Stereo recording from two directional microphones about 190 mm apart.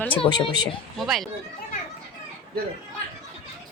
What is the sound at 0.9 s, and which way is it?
Speech, centre (ahead or behind).